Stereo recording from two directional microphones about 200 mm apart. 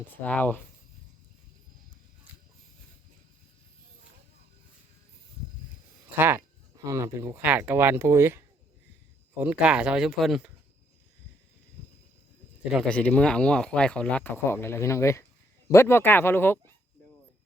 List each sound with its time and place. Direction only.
0.3 s speech: 5° left (ahead or behind)
6.1 s speech: 10° right (ahead or behind)
9.4 s speech: 5° right (ahead or behind)
12.7 s speech: 5° left (ahead or behind)